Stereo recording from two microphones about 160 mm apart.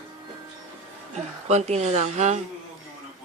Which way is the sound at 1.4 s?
45° right (ahead or behind).